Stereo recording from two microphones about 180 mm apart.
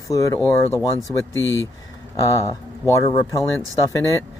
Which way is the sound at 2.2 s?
15° left (ahead or behind).